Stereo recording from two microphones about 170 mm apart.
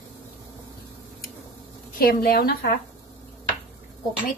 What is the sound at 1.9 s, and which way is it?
Speech, 60° left (ahead or behind).